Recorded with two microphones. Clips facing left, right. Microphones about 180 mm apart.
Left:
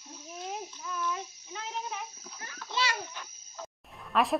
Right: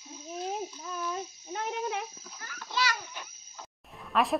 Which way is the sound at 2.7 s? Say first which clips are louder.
Right 1 dB; 25° left (ahead or behind).